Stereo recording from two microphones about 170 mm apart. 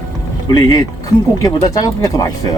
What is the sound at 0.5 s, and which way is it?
Speech, 20° left (ahead or behind).